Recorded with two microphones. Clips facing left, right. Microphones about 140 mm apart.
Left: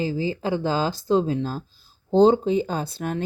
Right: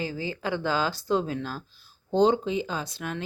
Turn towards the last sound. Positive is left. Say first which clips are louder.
# left 5 dB
turn(degrees=45)  # may be behind; listen again after turning